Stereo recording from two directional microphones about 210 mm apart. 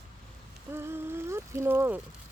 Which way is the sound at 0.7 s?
10° right (ahead or behind).